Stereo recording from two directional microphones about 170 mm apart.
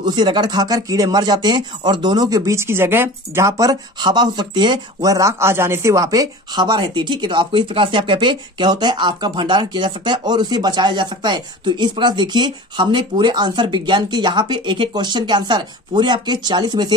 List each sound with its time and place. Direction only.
0.0 s speech: 25° right (ahead or behind)